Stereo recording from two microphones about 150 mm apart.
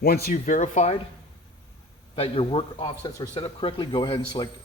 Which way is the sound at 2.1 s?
40° left (ahead or behind).